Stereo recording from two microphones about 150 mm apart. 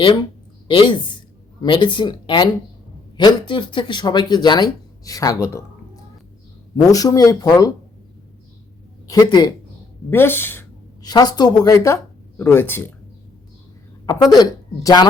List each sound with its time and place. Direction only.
0.0 s speech: 35° left (ahead or behind)
6.9 s speech: 25° left (ahead or behind)
9.0 s speech: 25° left (ahead or behind)
10.1 s speech: 15° left (ahead or behind)
11.0 s speech: 25° left (ahead or behind)
14.3 s speech: 25° left (ahead or behind)